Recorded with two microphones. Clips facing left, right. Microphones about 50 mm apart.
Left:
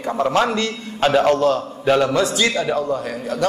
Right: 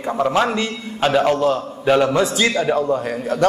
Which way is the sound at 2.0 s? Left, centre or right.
Right.